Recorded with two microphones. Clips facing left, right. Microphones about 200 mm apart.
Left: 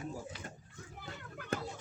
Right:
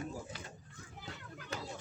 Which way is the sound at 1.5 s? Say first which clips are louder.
Left 6 dB; 55° left (ahead or behind).